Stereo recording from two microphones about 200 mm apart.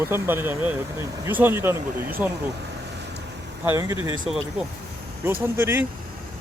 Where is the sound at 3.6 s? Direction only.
15° right (ahead or behind).